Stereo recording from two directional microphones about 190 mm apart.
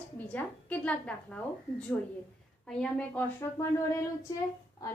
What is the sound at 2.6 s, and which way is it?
A woman's voice, 5° left (ahead or behind).